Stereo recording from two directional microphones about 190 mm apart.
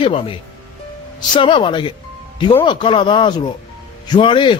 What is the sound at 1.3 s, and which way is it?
A man's voice, 25° left (ahead or behind).